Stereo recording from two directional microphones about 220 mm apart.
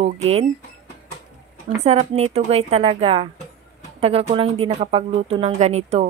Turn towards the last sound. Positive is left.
turn(degrees=-30)  # may be behind; listen again after turning